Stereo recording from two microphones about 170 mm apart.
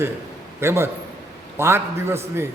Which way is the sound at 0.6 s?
15° right (ahead or behind).